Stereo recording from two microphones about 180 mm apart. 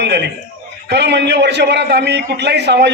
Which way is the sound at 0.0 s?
70° right (ahead or behind).